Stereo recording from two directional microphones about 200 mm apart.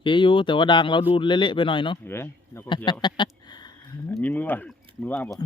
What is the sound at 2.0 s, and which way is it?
Speech, 10° left (ahead or behind).